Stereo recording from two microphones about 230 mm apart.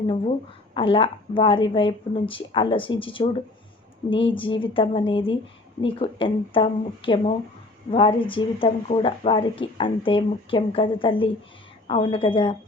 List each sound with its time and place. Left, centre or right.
0.7 s speech: left